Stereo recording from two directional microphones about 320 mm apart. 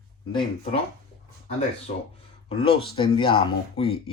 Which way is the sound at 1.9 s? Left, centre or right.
Left.